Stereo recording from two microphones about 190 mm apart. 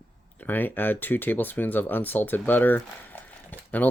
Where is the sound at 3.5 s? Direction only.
10° left (ahead or behind).